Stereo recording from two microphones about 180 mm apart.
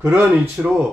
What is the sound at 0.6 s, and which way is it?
Speech, 5° right (ahead or behind).